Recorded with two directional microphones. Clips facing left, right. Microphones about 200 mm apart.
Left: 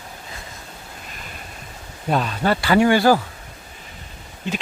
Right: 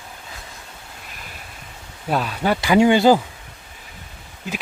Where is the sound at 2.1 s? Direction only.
5° right (ahead or behind).